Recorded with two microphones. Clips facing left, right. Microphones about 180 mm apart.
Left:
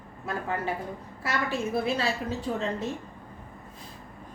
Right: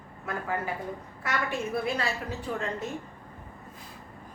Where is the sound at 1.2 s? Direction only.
30° left (ahead or behind).